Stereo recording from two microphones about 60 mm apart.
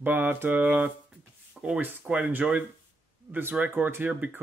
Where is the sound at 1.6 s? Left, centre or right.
Centre.